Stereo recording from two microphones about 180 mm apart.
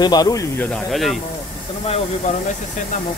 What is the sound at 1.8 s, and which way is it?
Speech, 35° left (ahead or behind).